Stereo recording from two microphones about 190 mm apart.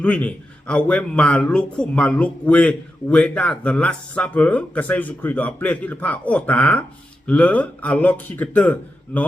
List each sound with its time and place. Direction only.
0.0 s a man's voice: 5° left (ahead or behind)